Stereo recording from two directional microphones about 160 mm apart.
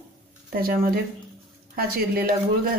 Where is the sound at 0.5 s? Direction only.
65° right (ahead or behind).